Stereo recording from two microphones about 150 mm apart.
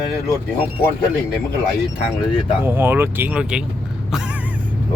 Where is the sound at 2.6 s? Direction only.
15° right (ahead or behind).